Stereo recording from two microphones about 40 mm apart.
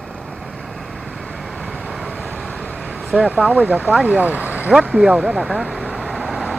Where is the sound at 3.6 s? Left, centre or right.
Right.